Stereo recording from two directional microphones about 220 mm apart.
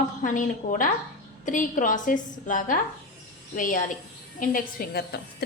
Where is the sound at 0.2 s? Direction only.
35° left (ahead or behind).